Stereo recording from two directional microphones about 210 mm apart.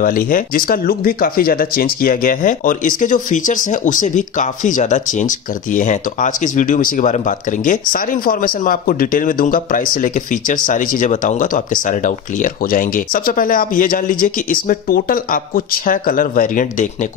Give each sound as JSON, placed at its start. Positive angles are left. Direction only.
{"t": 0.0, "sound": "a man's voice", "side_deg": 40}